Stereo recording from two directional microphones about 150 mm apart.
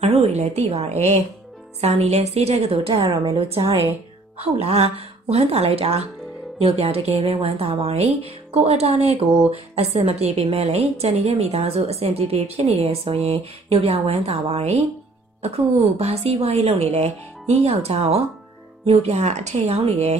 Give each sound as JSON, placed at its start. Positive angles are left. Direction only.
{"t": 0.0, "sound": "a woman's voice", "side_deg": -45}